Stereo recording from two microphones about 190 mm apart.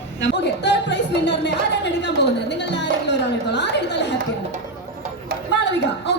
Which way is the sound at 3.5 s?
65° left (ahead or behind).